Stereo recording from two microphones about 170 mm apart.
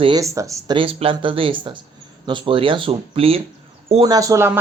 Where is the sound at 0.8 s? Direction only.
30° right (ahead or behind).